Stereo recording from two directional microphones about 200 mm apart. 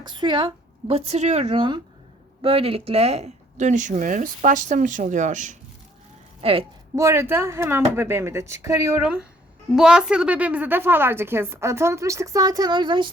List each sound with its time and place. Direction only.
0.0 s speech: 25° right (ahead or behind); by 5.5 s 40° right (ahead or behind)
6.4 s a woman's voice: 30° right (ahead or behind)
6.9 s a woman's voice: 15° right (ahead or behind)